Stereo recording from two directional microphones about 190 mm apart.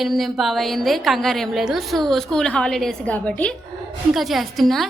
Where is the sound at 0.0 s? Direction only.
Centre (ahead or behind).